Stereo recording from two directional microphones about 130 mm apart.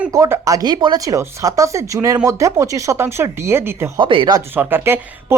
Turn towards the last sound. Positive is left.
turn(degrees=-15)  # may be behind; listen again after turning